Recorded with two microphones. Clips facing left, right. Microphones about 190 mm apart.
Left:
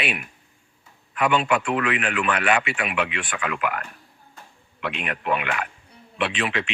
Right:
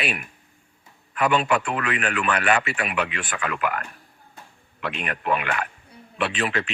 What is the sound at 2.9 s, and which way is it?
Speech, 40° right (ahead or behind).